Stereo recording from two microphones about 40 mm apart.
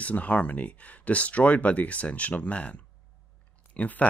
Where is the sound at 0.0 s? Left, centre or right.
Left.